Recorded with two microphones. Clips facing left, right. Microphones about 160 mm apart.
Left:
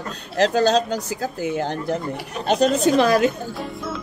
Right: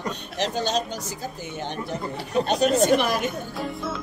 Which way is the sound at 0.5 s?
90° left.